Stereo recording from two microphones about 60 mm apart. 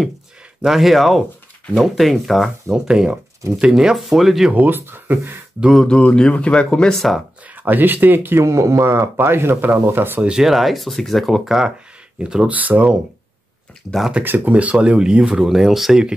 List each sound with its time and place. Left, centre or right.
0.6 s speech: centre
2.7 s speech: centre
4.6 s speech: right
5.9 s speech: centre
7.5 s speech: right
8.4 s speech: right
10.4 s speech: centre
12.4 s speech: right
14.2 s speech: right
14.5 s speech: right; by 16.1 s centre